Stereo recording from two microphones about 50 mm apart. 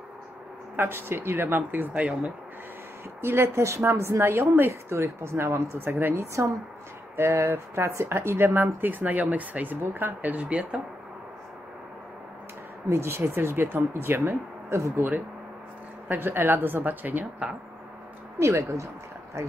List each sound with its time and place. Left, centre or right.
0.7 s a woman's voice: right
2.0 s speech: right
3.2 s a woman's voice: right
5.8 s a woman's voice: right
6.1 s speech: right
7.2 s a woman's voice: right
8.5 s speech: right
10.5 s speech: right
12.9 s a woman's voice: right
14.7 s speech: right
16.1 s a woman's voice: right
18.4 s speech: right